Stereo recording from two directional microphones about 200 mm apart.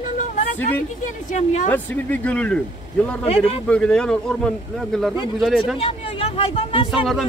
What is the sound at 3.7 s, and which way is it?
Speech, 5° left (ahead or behind).